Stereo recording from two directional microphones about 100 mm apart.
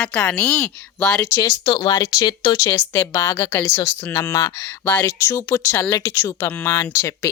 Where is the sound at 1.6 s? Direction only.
50° left (ahead or behind); by 4.7 s 35° left (ahead or behind).